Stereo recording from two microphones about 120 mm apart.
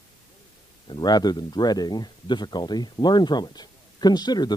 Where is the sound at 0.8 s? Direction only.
35° left (ahead or behind).